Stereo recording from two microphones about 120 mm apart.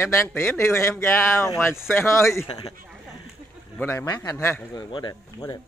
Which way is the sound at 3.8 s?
20° left (ahead or behind).